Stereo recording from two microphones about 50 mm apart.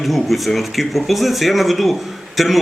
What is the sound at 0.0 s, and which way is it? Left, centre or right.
Speech, centre.